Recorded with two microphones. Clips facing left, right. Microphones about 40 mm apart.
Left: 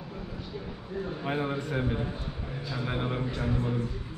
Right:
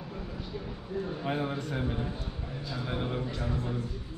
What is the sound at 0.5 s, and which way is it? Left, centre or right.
A man's voice, centre.